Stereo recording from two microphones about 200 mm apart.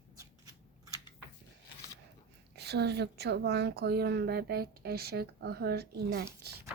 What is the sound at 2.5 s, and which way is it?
A woman's voice, 55° right (ahead or behind).